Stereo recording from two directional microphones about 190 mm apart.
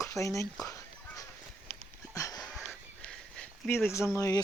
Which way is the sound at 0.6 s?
15° left (ahead or behind).